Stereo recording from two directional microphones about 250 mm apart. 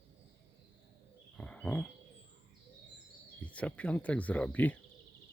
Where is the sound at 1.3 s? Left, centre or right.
Centre.